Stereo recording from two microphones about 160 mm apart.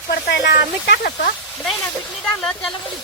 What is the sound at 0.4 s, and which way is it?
Speech, 90° left.